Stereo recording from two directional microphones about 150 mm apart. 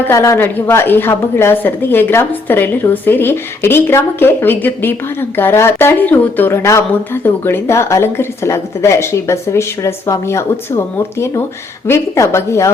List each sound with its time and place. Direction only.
0.1 s a woman's voice: 20° left (ahead or behind)